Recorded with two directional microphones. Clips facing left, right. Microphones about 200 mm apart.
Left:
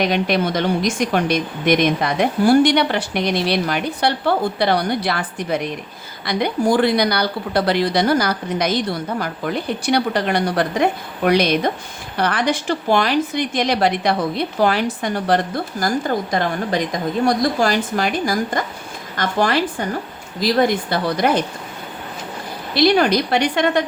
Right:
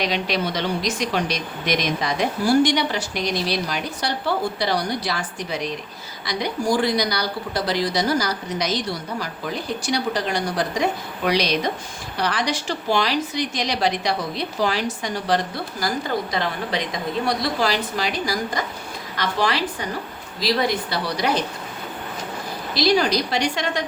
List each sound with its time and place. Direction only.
0.0 s a woman's voice: 50° left (ahead or behind)
22.7 s speech: 60° left (ahead or behind)